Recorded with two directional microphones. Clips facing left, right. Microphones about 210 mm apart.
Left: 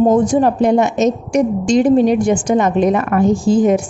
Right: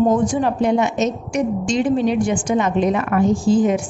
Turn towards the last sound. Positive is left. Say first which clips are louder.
# left 3 dB
turn(degrees=40)  # may be behind; listen again after turning